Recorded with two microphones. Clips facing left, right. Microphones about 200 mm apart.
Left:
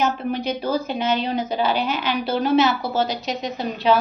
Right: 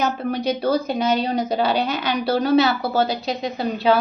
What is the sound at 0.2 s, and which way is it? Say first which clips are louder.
A woman's voice: right 2 dB; 40° right (ahead or behind).